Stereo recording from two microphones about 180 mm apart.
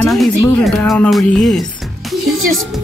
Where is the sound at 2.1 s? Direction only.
Centre (ahead or behind).